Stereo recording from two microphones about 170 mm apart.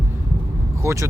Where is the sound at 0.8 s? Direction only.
15° right (ahead or behind).